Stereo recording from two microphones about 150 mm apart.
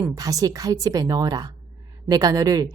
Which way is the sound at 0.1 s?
25° right (ahead or behind).